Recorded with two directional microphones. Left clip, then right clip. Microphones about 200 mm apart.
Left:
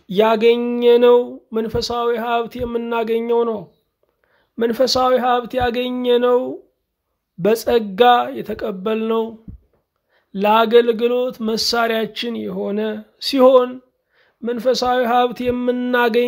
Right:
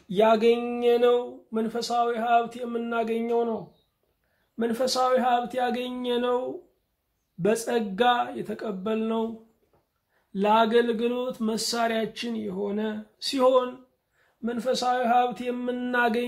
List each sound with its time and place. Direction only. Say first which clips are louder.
0.1 s a man's voice: left 6 dB; 50° left (ahead or behind)
10.3 s a man's voice: left 8 dB; 50° left (ahead or behind)